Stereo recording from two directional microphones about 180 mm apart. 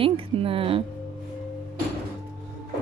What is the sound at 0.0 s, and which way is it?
Speech, 30° right (ahead or behind).